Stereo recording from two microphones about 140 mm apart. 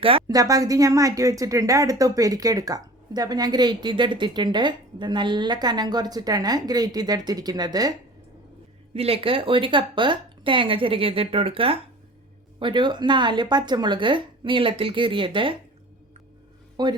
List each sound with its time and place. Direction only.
0.3 s a woman's voice: 25° right (ahead or behind)
8.9 s speech: 45° right (ahead or behind)
16.8 s speech: 30° right (ahead or behind)